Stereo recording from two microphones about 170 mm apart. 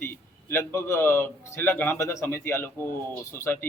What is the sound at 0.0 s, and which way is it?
A man's voice, 15° left (ahead or behind).